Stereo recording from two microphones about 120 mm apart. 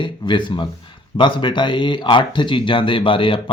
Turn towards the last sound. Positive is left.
turn(degrees=45)  # may be behind; listen again after turning